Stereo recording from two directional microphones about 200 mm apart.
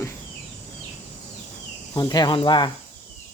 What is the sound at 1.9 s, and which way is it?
Speech, 20° left (ahead or behind).